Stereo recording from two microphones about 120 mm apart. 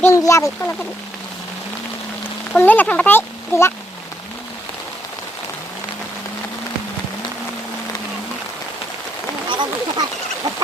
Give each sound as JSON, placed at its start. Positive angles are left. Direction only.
{"t": 0.0, "sound": "speech", "side_deg": 25}
{"t": 2.6, "sound": "speech", "side_deg": 15}
{"t": 9.5, "sound": "speech", "side_deg": -40}